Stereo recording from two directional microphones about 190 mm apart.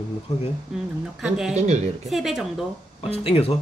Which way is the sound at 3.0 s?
30° left (ahead or behind).